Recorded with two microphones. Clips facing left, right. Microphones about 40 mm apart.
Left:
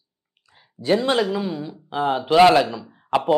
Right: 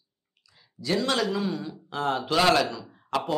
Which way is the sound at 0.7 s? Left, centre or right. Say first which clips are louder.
Left 6 dB; left.